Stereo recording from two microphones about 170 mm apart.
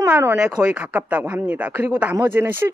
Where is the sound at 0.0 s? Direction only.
15° right (ahead or behind).